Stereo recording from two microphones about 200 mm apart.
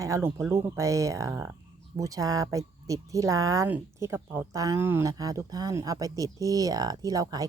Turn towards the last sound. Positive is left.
turn(degrees=-20)  # may be behind; listen again after turning